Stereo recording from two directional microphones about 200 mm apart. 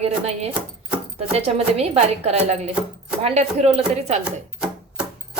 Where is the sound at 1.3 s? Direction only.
30° right (ahead or behind).